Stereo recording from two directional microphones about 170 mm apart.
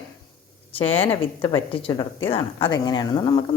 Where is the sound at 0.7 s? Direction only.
35° left (ahead or behind).